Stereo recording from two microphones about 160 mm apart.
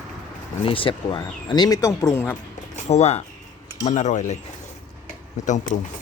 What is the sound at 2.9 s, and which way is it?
Speech, 45° left (ahead or behind).